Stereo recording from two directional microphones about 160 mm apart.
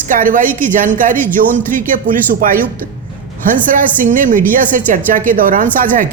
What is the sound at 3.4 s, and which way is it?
A woman's voice, 55° right (ahead or behind).